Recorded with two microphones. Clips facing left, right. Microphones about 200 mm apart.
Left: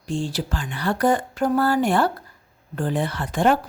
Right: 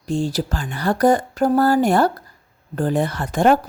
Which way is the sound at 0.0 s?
40° right (ahead or behind).